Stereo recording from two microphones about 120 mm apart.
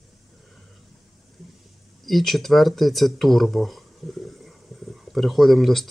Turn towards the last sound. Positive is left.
turn(degrees=0)  # may be behind; listen again after turning